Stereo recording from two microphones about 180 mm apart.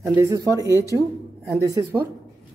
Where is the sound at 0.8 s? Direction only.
20° left (ahead or behind).